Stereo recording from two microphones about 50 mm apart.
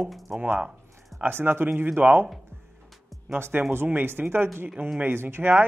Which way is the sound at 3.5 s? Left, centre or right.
Right.